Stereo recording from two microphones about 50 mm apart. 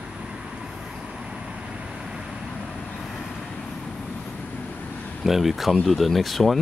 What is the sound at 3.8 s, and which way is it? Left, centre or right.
Vehicle, centre.